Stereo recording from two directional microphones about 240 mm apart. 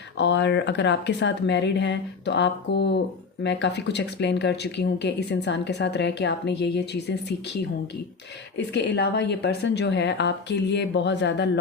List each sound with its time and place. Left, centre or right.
0.2 s speech: left